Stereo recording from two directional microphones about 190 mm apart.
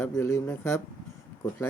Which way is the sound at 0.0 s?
15° left (ahead or behind).